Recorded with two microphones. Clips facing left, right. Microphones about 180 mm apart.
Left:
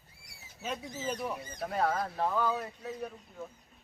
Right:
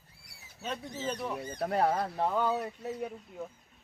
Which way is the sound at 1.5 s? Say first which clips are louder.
Right 5 dB; 60° right (ahead or behind).